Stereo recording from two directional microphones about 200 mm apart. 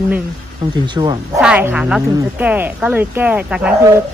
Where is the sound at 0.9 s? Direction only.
20° right (ahead or behind).